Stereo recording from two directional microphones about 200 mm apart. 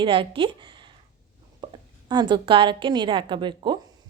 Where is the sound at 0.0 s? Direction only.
25° right (ahead or behind).